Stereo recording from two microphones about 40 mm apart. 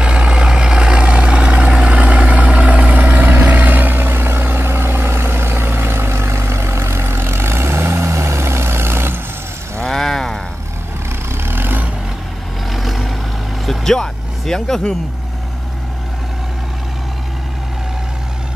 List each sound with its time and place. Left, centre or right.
0.0 s vehicle: right
9.8 s a sound: centre
11.3 s vehicle: right
12.7 s vehicle: centre
13.7 s vehicle: centre